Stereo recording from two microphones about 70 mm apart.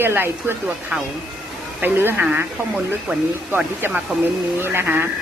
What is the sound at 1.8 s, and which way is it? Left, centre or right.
Speech, right.